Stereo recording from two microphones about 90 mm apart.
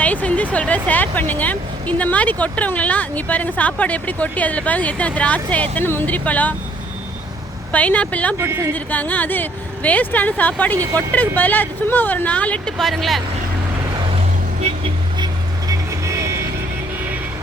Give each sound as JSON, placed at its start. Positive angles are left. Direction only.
{"t": 0.0, "sound": "speech", "side_deg": 15}
{"t": 7.7, "sound": "speech", "side_deg": 15}
{"t": 8.4, "sound": "speech", "side_deg": -30}
{"t": 8.7, "sound": "speech", "side_deg": 20}
{"t": 12.7, "sound": "speech", "side_deg": 0}
{"t": 15.9, "sound": "music", "side_deg": -35}